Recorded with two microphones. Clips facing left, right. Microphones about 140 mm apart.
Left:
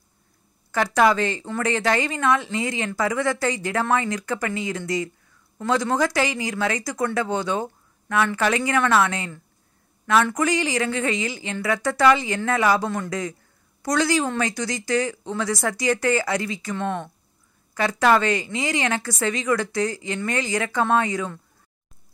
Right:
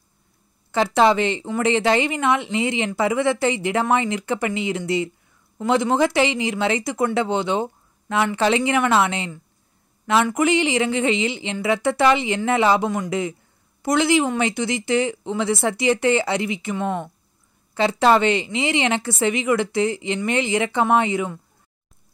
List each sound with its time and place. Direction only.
0.7 s a woman's voice: 25° right (ahead or behind)
17.7 s a woman's voice: 25° right (ahead or behind)